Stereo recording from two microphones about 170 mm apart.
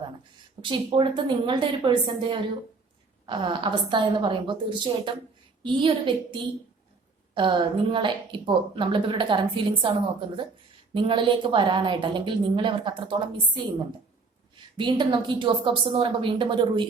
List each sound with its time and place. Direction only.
0.6 s a woman's voice: 30° right (ahead or behind)
14.8 s a woman's voice: 25° right (ahead or behind)